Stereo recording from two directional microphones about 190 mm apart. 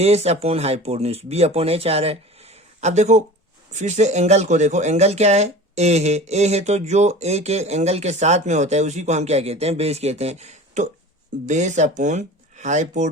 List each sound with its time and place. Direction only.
0.0 s speech: 35° right (ahead or behind)